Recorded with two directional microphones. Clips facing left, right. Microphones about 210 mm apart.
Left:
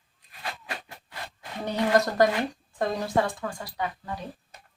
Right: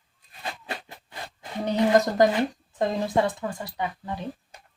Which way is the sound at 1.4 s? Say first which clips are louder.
Right 4 dB; 20° right (ahead or behind).